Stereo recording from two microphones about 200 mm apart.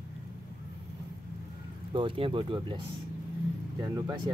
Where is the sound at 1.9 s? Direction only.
25° right (ahead or behind).